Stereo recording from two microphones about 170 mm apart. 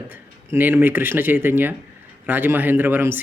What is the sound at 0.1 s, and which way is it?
Speech, 10° right (ahead or behind).